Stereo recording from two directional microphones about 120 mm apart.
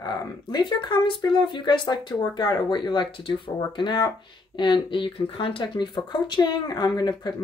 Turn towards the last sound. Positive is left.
turn(degrees=35)  # may be behind; listen again after turning